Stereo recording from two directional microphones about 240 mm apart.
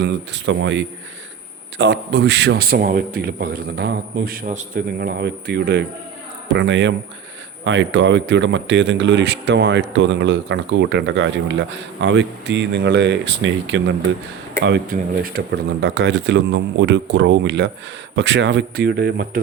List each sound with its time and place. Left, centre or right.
0.0 s a man's voice: right